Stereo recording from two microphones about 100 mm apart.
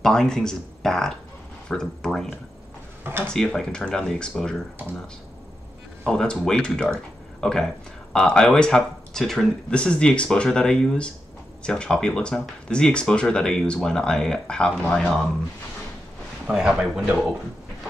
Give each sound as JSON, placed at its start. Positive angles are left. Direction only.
{"t": 0.0, "sound": "speech", "side_deg": 5}
{"t": 3.0, "sound": "a sound", "side_deg": -20}
{"t": 3.3, "sound": "speech", "side_deg": 5}
{"t": 6.0, "sound": "speech", "side_deg": 5}
{"t": 16.4, "sound": "speech", "side_deg": -5}